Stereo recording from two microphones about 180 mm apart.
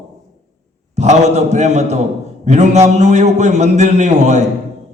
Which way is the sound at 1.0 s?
40° right (ahead or behind).